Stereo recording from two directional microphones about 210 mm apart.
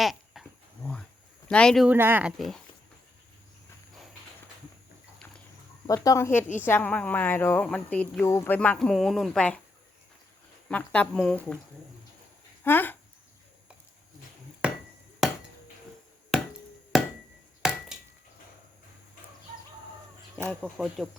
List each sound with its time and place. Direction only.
0.0 s dog: centre (ahead or behind)
1.5 s speech: 5° left (ahead or behind)
5.9 s speech: 15° left (ahead or behind)
10.7 s speech: 5° left (ahead or behind)
12.6 s speech: 10° left (ahead or behind)
14.6 s a sound: 5° right (ahead or behind)
15.2 s chop: centre (ahead or behind)
16.9 s chop: centre (ahead or behind)
17.6 s a sound: centre (ahead or behind)
20.4 s speech: 5° left (ahead or behind)